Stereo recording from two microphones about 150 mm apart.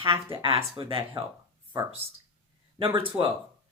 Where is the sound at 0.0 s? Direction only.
35° right (ahead or behind).